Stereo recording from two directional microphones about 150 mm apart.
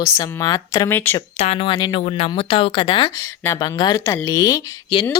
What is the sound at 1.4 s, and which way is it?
Speech, 45° left (ahead or behind).